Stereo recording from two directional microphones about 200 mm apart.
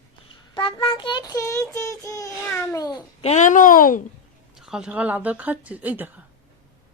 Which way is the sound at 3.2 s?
35° left (ahead or behind).